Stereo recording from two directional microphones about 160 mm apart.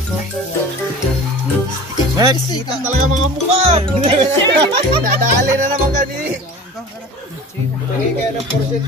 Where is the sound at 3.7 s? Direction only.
40° right (ahead or behind).